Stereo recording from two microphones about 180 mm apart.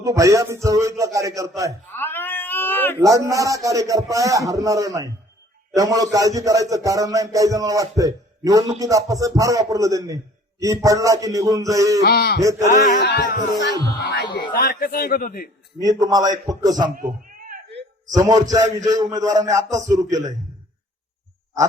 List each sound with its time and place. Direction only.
0.0 s speech: 15° right (ahead or behind)
1.9 s cat: 10° left (ahead or behind)
3.0 s a man's voice: 15° right (ahead or behind)
12.0 s speech: 60° left (ahead or behind)
12.4 s a man's voice: 20° right (ahead or behind)
13.0 s speech: 65° left (ahead or behind)
13.6 s a man's voice: 20° right (ahead or behind)
14.5 s a man's voice: 55° left (ahead or behind)
15.8 s a man's voice: 20° right (ahead or behind)
16.9 s a sound: 50° right (ahead or behind)
18.0 s a man's voice: 20° right (ahead or behind)